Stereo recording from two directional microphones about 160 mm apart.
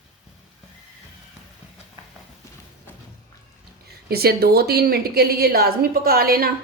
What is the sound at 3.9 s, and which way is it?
A woman's voice, 75° right (ahead or behind).